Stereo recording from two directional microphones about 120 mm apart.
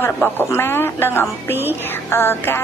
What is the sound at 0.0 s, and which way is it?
Speech, 20° left (ahead or behind).